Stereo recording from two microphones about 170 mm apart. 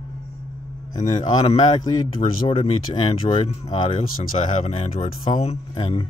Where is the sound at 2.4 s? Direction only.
30° left (ahead or behind).